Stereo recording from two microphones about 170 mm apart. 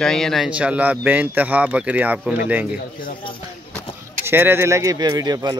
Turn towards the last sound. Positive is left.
turn(degrees=-25)  # may be behind; listen again after turning